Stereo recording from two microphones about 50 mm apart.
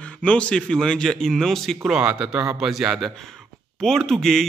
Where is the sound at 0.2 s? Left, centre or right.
Left.